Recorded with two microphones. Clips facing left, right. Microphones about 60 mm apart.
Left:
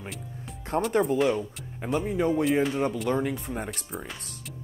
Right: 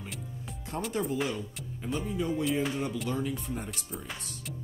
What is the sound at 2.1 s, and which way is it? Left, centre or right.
Speech, left.